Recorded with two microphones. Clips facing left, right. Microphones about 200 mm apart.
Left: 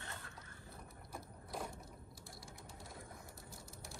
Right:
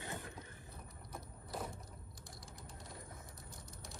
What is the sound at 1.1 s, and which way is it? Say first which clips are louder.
Vehicle: right 1 dB; centre (ahead or behind).